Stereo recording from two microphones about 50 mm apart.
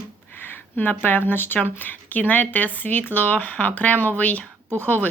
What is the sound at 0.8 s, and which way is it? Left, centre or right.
Speech, left.